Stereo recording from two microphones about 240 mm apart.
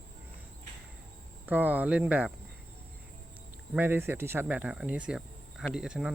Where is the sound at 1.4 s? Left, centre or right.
Centre.